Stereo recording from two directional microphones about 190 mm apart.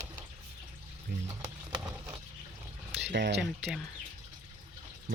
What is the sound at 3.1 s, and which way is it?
Speech, 65° right (ahead or behind).